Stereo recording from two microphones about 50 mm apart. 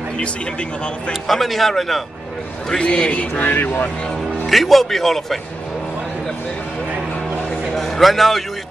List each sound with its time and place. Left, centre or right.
1.2 s a man's voice: centre
2.8 s a man's voice: left
4.5 s a man's voice: centre
7.7 s a sound: centre